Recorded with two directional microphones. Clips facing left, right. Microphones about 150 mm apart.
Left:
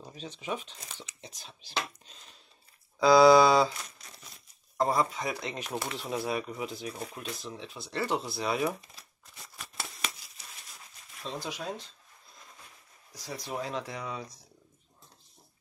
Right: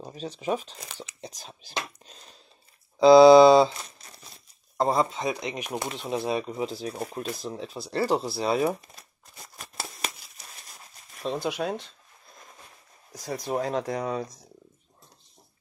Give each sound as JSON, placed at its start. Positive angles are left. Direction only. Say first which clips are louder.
{"t": 0.0, "sound": "speech", "louder": "right 8 dB", "side_deg": -40}
{"t": 3.0, "sound": "speech", "louder": "right 6 dB", "side_deg": -25}
{"t": 8.9, "sound": "crumpling", "louder": "right 4 dB", "side_deg": -40}
{"t": 11.2, "sound": "speech", "louder": "right 8 dB", "side_deg": -60}
{"t": 13.1, "sound": "speech", "louder": "right 8 dB", "side_deg": -50}